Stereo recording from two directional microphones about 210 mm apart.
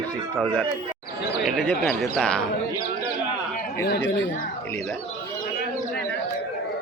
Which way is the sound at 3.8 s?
55° left (ahead or behind).